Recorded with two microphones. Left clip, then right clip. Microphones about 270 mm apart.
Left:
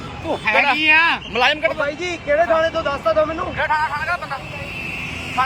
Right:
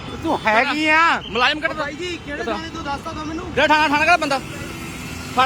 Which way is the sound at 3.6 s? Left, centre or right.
Right.